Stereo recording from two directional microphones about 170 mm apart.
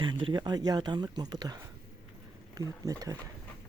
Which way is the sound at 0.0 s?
30° right (ahead or behind).